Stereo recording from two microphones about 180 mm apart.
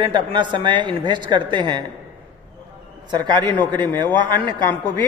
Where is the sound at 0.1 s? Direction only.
25° right (ahead or behind).